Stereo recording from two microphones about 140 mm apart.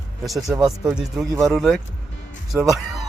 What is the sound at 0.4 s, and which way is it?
Speech, 20° right (ahead or behind).